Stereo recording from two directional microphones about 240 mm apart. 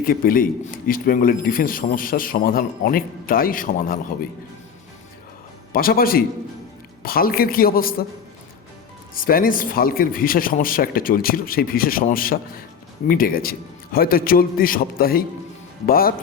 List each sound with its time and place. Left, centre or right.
0.0 s a man's voice: left
5.7 s a man's voice: left
9.1 s a man's voice: left